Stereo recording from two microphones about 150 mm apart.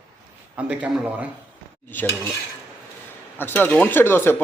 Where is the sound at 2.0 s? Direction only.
10° left (ahead or behind).